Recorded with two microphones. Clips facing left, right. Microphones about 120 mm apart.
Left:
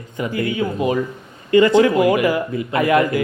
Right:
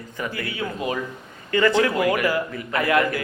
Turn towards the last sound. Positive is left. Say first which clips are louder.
# left 5 dB
turn(degrees=20)  # may be behind; listen again after turning